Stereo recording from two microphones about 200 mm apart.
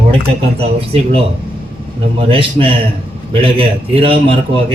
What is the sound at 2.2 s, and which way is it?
A man's voice, 25° right (ahead or behind).